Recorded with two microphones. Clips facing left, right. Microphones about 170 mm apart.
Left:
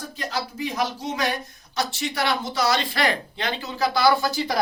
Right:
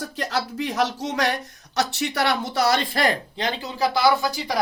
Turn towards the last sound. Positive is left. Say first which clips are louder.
# even
turn(degrees=0)  # may be behind; listen again after turning